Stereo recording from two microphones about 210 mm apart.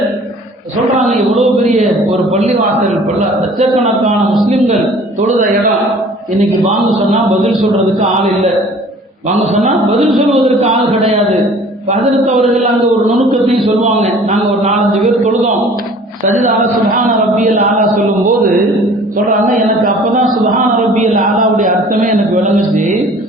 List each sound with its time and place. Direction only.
1.0 s a man's voice: centre (ahead or behind)
4.3 s a man's voice: centre (ahead or behind)
7.3 s a man's voice: centre (ahead or behind)
10.0 s a man's voice: centre (ahead or behind)
13.8 s chant: 30° right (ahead or behind)
17.1 s chant: 35° right (ahead or behind)
19.4 s chant: 40° right (ahead or behind)
21.0 s chant: 35° right (ahead or behind)